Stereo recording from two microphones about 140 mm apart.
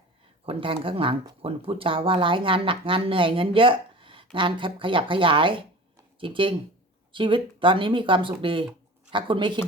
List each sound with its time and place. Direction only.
0.4 s speech: 40° right (ahead or behind)